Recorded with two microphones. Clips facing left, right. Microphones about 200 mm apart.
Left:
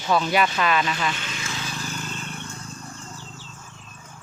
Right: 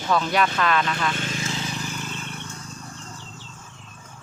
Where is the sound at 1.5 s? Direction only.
20° right (ahead or behind).